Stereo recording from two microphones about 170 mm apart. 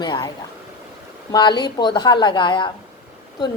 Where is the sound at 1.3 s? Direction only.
25° left (ahead or behind).